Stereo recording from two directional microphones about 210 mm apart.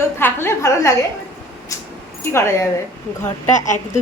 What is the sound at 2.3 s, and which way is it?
Speech, 15° left (ahead or behind).